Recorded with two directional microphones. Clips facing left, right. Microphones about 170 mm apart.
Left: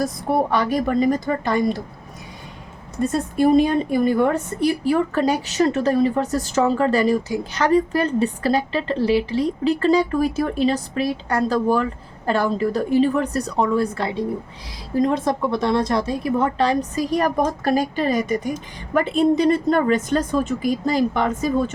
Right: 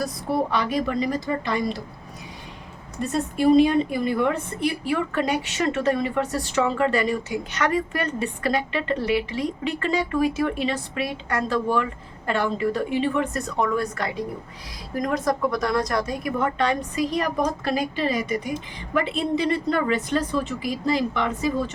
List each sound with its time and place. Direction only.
0.5 s a woman's voice: 50° left (ahead or behind)
3.6 s a woman's voice: 45° left (ahead or behind)